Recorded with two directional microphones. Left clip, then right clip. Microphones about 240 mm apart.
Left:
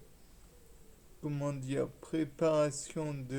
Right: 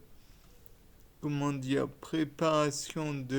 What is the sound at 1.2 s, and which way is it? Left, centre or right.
Speech, right.